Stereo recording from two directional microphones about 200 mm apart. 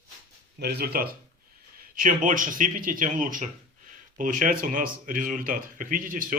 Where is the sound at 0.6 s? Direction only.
50° right (ahead or behind).